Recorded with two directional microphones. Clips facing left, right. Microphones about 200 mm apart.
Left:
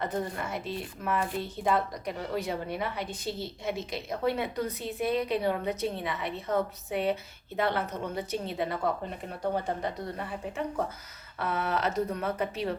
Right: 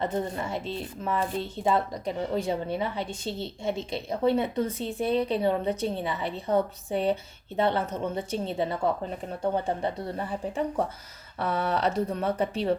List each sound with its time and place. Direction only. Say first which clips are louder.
0.0 s speech: right 3 dB; 25° right (ahead or behind)